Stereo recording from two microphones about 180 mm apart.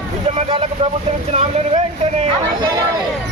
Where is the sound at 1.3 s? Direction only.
35° right (ahead or behind).